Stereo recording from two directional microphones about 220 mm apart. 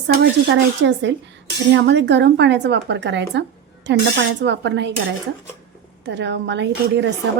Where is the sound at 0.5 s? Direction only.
55° right (ahead or behind).